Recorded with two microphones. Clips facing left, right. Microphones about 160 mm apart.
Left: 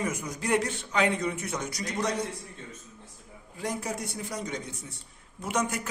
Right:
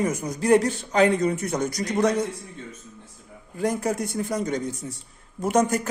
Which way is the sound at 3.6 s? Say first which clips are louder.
Right 8 dB; 50° right (ahead or behind).